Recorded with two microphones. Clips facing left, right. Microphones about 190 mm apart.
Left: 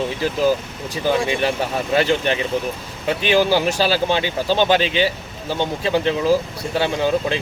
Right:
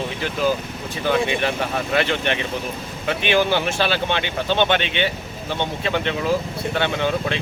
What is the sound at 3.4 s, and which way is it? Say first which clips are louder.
Speech: left 3 dB; 10° left (ahead or behind).